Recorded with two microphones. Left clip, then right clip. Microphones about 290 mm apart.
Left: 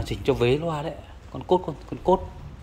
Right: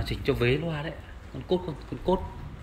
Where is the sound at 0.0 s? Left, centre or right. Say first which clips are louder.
Left 4 dB; centre.